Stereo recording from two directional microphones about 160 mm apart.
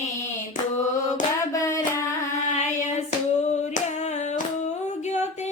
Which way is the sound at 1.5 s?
20° left (ahead or behind).